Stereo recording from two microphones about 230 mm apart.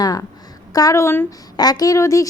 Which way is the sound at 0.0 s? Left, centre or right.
Centre.